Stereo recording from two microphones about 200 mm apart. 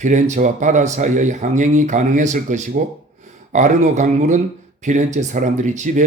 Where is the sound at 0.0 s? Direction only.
40° right (ahead or behind).